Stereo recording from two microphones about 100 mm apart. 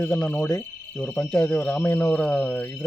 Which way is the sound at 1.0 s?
15° left (ahead or behind).